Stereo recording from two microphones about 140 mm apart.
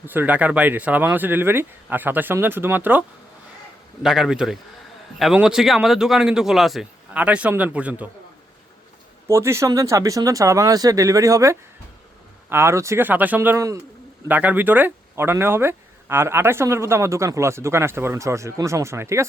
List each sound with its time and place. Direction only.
0.0 s speech: 15° right (ahead or behind)
4.0 s a man's voice: 5° right (ahead or behind)
9.2 s speech: 20° right (ahead or behind)